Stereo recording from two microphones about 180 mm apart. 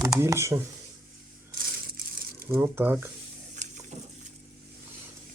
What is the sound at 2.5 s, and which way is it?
Speech, 10° right (ahead or behind).